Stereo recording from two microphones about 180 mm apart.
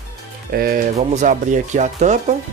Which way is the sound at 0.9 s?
40° right (ahead or behind).